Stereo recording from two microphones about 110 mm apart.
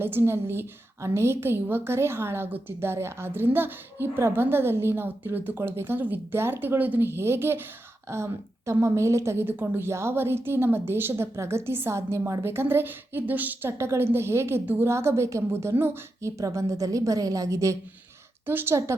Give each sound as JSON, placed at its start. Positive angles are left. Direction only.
{"t": 0.0, "sound": "a woman's voice", "side_deg": -20}